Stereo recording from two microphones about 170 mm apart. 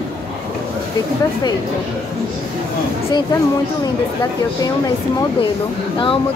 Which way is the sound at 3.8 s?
20° left (ahead or behind).